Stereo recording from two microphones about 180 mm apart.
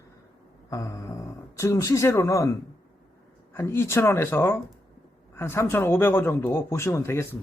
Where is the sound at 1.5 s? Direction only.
15° left (ahead or behind).